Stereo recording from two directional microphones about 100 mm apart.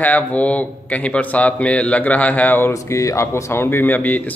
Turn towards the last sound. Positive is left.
turn(degrees=15)  # may be behind; listen again after turning